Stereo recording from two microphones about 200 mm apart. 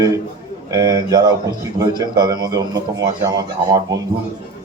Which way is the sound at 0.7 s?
20° right (ahead or behind).